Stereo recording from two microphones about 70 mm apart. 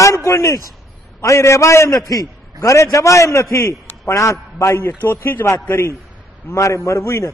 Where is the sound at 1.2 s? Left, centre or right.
Left.